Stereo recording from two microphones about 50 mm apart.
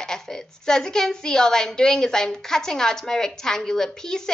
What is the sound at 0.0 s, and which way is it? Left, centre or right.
A woman's voice, centre.